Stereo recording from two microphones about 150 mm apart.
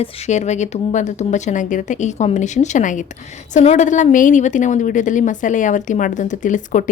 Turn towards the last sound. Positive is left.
turn(degrees=60)  # may be behind; listen again after turning